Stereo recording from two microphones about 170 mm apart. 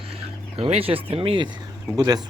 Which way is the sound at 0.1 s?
35° right (ahead or behind).